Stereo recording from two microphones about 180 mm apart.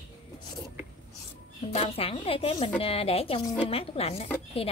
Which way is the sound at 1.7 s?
35° left (ahead or behind).